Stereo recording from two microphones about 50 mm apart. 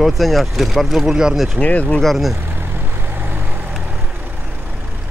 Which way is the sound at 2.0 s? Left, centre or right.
Centre.